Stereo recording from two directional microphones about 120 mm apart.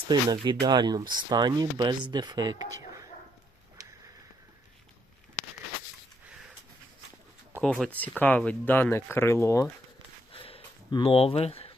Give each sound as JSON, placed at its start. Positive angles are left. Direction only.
{"t": 0.1, "sound": "speech", "side_deg": -35}
{"t": 7.6, "sound": "speech", "side_deg": 5}
{"t": 10.3, "sound": "a sound", "side_deg": 50}
{"t": 10.9, "sound": "speech", "side_deg": 50}